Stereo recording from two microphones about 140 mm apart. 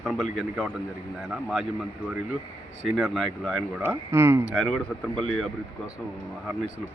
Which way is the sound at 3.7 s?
15° right (ahead or behind).